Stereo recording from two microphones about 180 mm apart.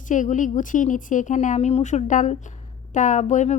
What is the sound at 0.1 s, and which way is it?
A woman's voice, 45° left (ahead or behind).